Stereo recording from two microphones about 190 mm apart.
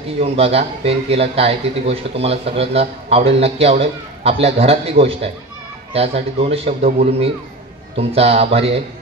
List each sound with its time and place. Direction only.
0.2 s a man's voice: 30° right (ahead or behind)